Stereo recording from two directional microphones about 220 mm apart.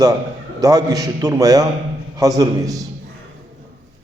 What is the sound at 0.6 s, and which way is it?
A man's voice, 15° right (ahead or behind).